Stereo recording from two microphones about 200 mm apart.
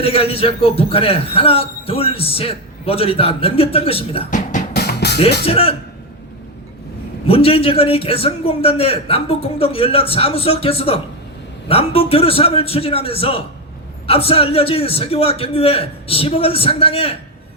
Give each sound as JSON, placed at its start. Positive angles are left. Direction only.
{"t": 0.0, "sound": "a man's voice", "side_deg": 30}
{"t": 4.7, "sound": "music", "side_deg": 55}
{"t": 5.5, "sound": "a man's voice", "side_deg": 30}
{"t": 7.3, "sound": "a man's voice", "side_deg": 30}